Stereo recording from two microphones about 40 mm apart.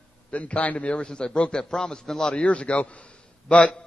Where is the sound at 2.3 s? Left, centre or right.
Left.